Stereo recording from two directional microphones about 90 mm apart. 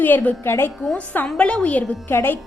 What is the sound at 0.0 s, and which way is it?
Speech, 20° left (ahead or behind).